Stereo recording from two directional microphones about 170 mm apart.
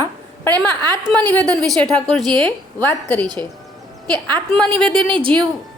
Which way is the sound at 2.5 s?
15° left (ahead or behind).